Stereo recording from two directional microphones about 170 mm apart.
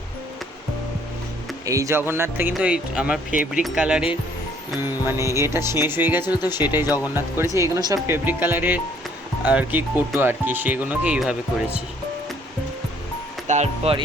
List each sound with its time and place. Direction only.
1.6 s speech: 20° right (ahead or behind)
7.6 s speech: 25° right (ahead or behind)
8.0 s speech: 10° right (ahead or behind)
13.5 s speech: 45° right (ahead or behind)